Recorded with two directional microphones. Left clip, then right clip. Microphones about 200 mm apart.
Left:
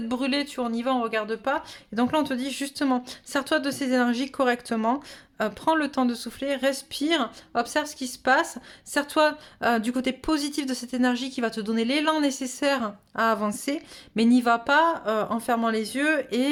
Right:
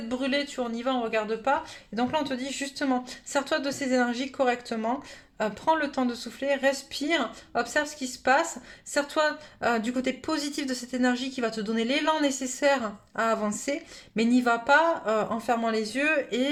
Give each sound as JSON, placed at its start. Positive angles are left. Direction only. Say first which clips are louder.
{"t": 0.1, "sound": "speech", "louder": "left 1 dB", "side_deg": 40}